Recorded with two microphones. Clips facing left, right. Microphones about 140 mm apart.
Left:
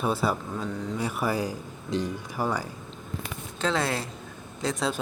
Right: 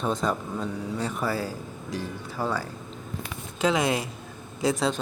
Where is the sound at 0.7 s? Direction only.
10° right (ahead or behind).